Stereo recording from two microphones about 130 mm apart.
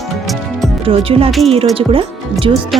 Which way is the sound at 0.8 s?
45° right (ahead or behind).